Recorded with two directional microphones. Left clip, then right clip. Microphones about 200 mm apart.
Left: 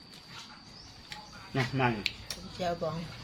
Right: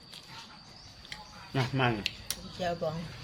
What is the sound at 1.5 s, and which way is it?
Speech, 55° right (ahead or behind).